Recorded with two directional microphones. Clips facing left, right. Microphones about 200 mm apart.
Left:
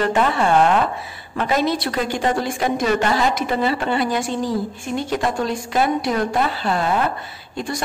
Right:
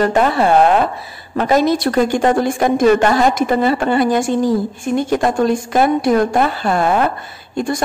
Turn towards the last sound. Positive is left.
turn(degrees=-50)  # may be behind; listen again after turning